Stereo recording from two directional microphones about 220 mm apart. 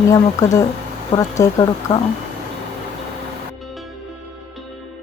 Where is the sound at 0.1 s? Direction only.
15° left (ahead or behind).